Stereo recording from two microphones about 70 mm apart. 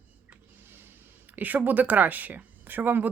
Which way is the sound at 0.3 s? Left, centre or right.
Right.